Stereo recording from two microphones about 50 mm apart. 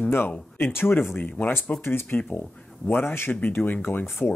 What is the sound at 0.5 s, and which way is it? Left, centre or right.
Speech, left.